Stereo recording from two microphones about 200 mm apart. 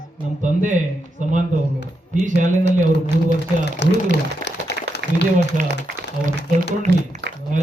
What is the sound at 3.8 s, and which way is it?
Speech, 60° left (ahead or behind).